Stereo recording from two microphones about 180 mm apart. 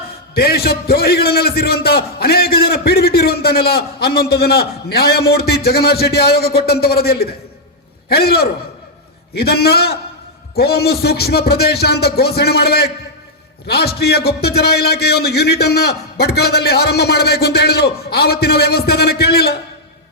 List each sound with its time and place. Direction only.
0.3 s a man's voice: 60° left (ahead or behind)